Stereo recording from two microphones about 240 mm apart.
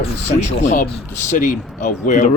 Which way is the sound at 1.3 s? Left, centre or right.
Left.